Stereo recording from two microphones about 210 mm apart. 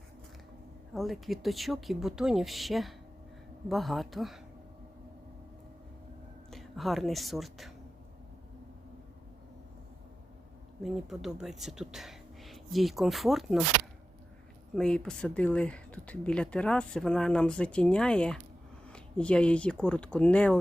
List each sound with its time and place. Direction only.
0.9 s speech: centre (ahead or behind)
6.5 s speech: centre (ahead or behind)
10.8 s speech: centre (ahead or behind)
14.8 s speech: 5° left (ahead or behind)